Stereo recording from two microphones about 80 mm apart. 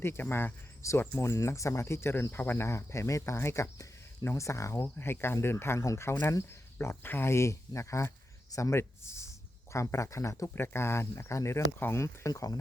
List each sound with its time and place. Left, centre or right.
0.0 s speech: left
2.6 s speech: left
4.9 s speech: left
10.5 s speech: left
12.3 s speech: left